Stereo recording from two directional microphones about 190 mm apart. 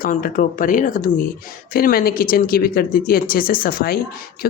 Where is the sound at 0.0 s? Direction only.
45° left (ahead or behind).